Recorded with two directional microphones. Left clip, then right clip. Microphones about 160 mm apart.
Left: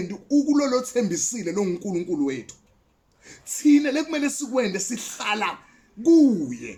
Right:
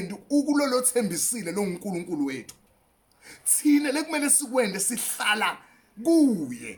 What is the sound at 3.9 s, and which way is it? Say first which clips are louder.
Speech: left 2 dB; 25° right (ahead or behind).